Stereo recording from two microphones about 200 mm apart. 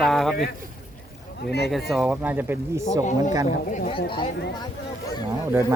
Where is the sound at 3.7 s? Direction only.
35° left (ahead or behind).